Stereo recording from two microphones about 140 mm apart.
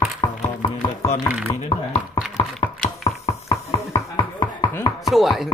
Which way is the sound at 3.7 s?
25° left (ahead or behind).